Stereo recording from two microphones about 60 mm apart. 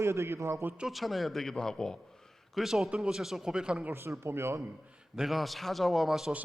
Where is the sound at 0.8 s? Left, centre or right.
Centre.